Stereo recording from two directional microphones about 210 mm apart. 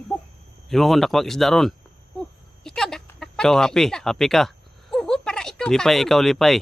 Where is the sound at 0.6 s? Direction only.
Centre (ahead or behind).